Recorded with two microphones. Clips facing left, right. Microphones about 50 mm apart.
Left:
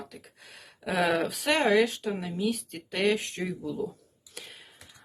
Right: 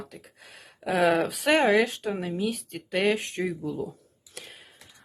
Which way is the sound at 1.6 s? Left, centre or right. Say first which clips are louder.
Right 1 dB; right.